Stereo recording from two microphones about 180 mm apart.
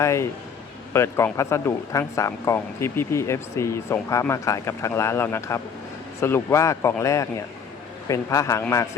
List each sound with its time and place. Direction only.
0.0 s speech: 15° left (ahead or behind)